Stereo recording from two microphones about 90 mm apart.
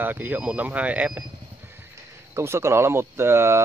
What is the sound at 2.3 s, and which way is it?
Speech, 30° right (ahead or behind).